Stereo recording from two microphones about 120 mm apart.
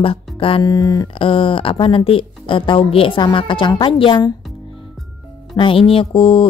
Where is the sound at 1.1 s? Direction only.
45° left (ahead or behind).